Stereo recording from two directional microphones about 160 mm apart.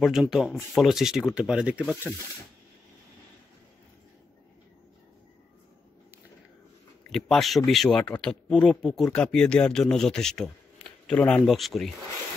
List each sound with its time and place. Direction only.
0.0 s speech: 5° right (ahead or behind)
7.1 s speech: centre (ahead or behind)